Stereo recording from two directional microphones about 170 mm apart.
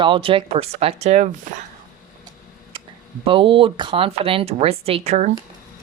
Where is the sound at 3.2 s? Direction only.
30° right (ahead or behind).